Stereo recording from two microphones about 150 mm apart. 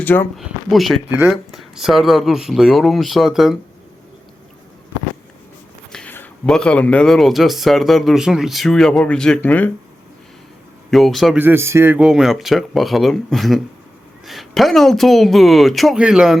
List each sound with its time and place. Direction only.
0.0 s speech: 10° left (ahead or behind)
0.3 s speech: centre (ahead or behind)
5.9 s speech: 10° left (ahead or behind)
10.9 s speech: centre (ahead or behind)
11.3 s speech: 15° right (ahead or behind)
11.9 s speech: 5° right (ahead or behind)